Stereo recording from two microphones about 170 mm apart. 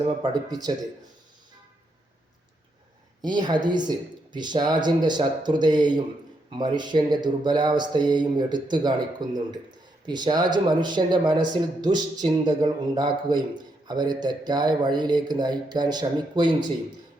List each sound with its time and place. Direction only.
0.0 s speech: 25° right (ahead or behind)
3.2 s speech: 25° right (ahead or behind)